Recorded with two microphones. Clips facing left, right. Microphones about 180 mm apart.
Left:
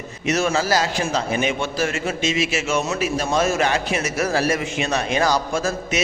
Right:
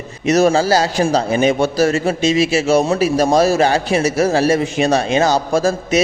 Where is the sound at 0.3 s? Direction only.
40° right (ahead or behind).